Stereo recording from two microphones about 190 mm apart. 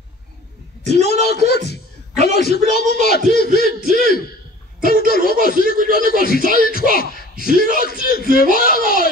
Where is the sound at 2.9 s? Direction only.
55° left (ahead or behind).